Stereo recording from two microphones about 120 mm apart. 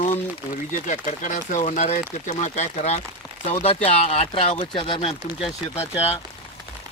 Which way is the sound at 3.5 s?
60° left (ahead or behind).